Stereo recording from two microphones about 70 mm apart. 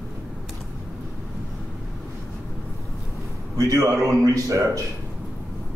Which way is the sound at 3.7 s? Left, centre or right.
Right.